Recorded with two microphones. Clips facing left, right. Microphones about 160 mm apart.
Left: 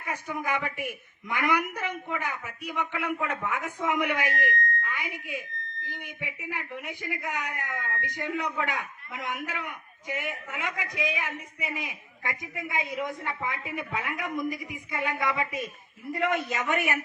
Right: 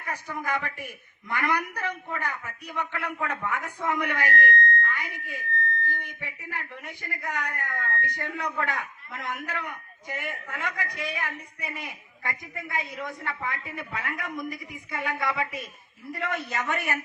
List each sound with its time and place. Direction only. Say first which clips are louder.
0.0 s a man's voice: left 1 dB; 15° left (ahead or behind)